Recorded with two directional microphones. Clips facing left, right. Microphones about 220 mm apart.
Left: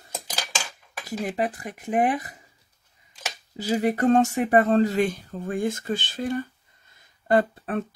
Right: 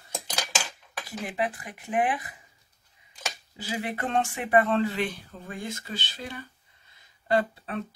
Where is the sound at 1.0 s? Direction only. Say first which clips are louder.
Left 4 dB; 40° left (ahead or behind).